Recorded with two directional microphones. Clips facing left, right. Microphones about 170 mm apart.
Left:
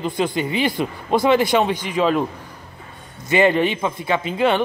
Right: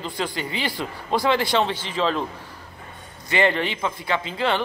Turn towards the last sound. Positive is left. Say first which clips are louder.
# left 5 dB
turn(degrees=20)  # may be behind; listen again after turning